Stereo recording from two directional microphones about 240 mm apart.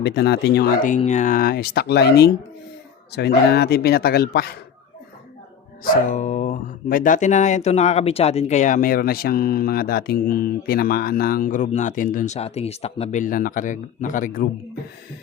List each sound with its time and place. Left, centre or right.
0.0 s speech: left
5.8 s speech: left